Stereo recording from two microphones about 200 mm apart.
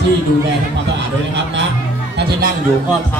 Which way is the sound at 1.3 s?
65° right (ahead or behind).